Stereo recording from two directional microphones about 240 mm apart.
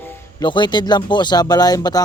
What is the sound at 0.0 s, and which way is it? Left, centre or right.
Speech, centre.